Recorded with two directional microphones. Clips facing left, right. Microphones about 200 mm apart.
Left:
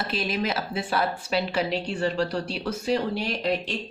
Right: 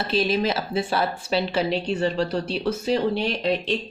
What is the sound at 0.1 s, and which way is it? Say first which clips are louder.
Speech: right 7 dB; 30° right (ahead or behind).